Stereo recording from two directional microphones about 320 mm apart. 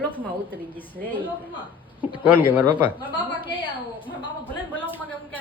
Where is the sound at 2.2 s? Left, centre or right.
Centre.